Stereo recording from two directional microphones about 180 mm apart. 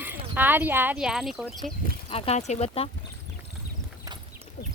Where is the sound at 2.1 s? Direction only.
35° left (ahead or behind).